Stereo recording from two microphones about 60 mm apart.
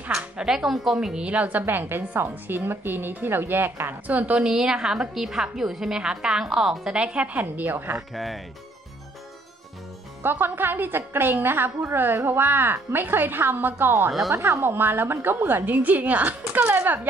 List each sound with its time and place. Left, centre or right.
0.4 s a woman's voice: centre; by 3.9 s right
4.1 s a woman's voice: right
4.4 s a woman's voice: centre
7.0 s a woman's voice: centre
8.1 s speech: centre
10.2 s a woman's voice: right
14.3 s speech: right
14.6 s a woman's voice: right